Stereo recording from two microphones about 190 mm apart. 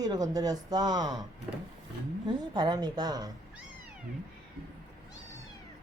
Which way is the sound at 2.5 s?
20° right (ahead or behind).